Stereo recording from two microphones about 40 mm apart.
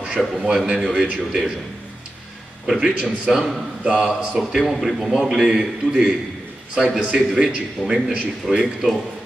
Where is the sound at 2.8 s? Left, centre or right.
Right.